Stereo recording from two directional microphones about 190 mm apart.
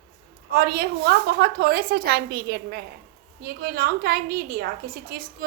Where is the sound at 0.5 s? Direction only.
50° right (ahead or behind).